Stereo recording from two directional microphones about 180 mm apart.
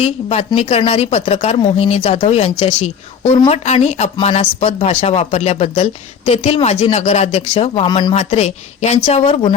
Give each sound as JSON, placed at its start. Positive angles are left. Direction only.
{"t": 0.0, "sound": "speech", "side_deg": 35}
{"t": 8.1, "sound": "speech", "side_deg": 35}